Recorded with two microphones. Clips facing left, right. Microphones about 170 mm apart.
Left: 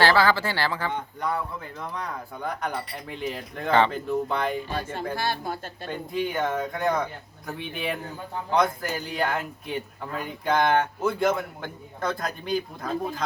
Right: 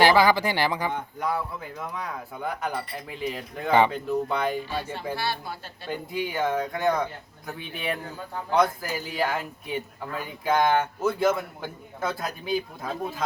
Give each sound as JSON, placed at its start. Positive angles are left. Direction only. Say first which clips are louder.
{"t": 0.0, "sound": "speech", "louder": "right 2 dB", "side_deg": -15}
{"t": 1.8, "sound": "a man's voice", "louder": "left 1 dB", "side_deg": -5}
{"t": 3.9, "sound": "a man's voice", "louder": "even", "side_deg": 0}
{"t": 5.1, "sound": "speech", "louder": "left 3 dB", "side_deg": 45}
{"t": 5.9, "sound": "a man's voice", "louder": "left 1 dB", "side_deg": -5}